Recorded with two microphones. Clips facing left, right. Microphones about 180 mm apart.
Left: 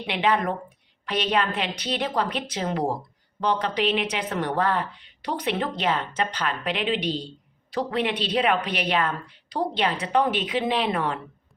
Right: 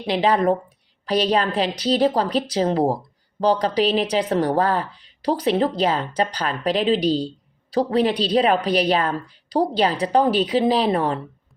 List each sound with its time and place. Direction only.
0.0 s a woman's voice: 35° right (ahead or behind)